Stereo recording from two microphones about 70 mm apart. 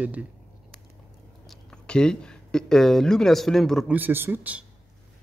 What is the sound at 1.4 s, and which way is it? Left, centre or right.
Speech, centre.